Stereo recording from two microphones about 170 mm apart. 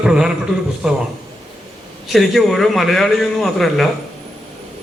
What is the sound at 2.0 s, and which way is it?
A man's voice, centre (ahead or behind).